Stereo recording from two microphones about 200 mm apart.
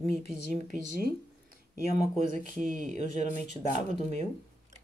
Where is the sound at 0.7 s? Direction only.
40° right (ahead or behind).